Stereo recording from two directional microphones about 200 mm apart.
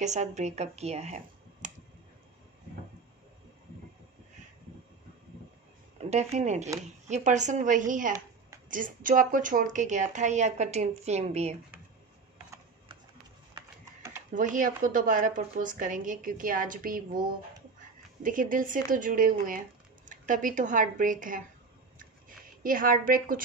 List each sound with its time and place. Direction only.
0.0 s speech: 35° right (ahead or behind)
5.9 s a woman's voice: 35° right (ahead or behind)
14.3 s a woman's voice: 40° right (ahead or behind)
18.2 s a woman's voice: 40° right (ahead or behind)
22.6 s a woman's voice: 45° right (ahead or behind)